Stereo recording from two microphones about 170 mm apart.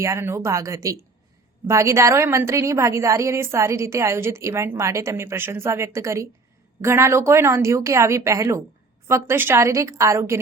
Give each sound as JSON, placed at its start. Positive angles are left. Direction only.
{"t": 0.0, "sound": "a woman's voice", "side_deg": -15}